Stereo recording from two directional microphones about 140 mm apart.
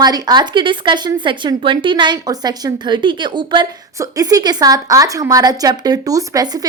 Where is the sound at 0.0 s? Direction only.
30° right (ahead or behind).